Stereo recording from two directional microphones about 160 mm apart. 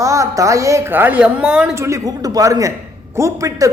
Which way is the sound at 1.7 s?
20° right (ahead or behind).